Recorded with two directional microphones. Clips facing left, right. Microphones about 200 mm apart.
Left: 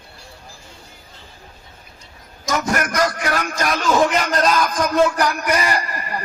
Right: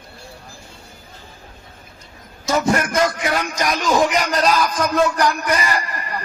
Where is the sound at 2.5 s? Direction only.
30° right (ahead or behind).